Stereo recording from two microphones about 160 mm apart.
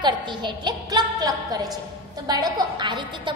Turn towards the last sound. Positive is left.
turn(degrees=-30)  # may be behind; listen again after turning